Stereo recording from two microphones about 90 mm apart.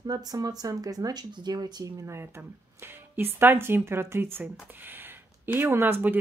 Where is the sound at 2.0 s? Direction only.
30° right (ahead or behind).